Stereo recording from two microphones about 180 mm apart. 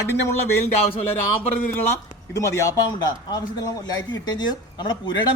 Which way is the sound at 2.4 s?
15° left (ahead or behind).